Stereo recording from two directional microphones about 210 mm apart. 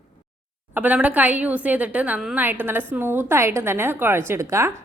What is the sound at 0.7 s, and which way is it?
A woman's voice, 5° right (ahead or behind).